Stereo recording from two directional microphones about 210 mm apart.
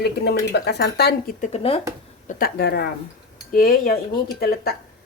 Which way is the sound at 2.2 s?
50° left (ahead or behind).